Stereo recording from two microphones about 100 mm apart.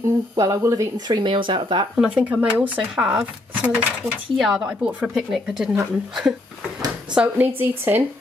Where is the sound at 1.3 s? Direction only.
60° right (ahead or behind).